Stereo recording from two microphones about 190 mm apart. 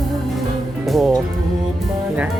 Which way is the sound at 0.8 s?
Centre (ahead or behind).